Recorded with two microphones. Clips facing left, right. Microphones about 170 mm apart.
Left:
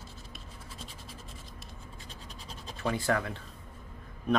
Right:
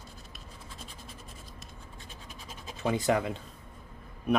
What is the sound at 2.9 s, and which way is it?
Speech, 20° right (ahead or behind).